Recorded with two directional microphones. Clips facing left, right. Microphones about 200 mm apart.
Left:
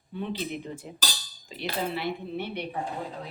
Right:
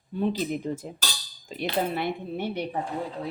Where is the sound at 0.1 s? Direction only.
40° right (ahead or behind).